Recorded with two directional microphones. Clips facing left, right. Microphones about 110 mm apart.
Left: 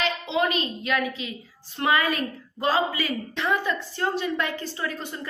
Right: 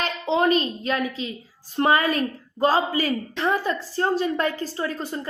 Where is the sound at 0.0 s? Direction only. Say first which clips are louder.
Right 3 dB; 40° right (ahead or behind).